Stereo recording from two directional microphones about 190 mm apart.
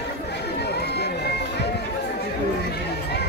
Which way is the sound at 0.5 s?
60° left (ahead or behind).